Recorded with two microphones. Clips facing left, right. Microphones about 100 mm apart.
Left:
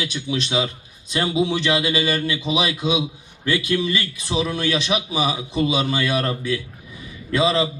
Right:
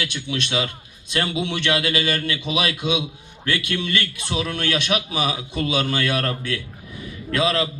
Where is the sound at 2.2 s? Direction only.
25° left (ahead or behind).